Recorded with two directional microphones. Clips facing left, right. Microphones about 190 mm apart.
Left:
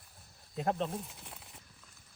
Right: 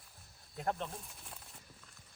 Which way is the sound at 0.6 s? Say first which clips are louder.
Left 5 dB; 35° left (ahead or behind).